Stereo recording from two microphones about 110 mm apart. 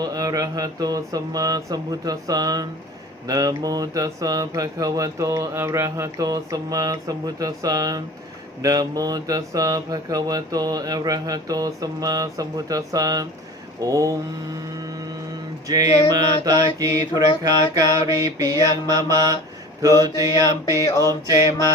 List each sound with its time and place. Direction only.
0.0 s speech: 35° right (ahead or behind)
15.6 s speech: 35° right (ahead or behind)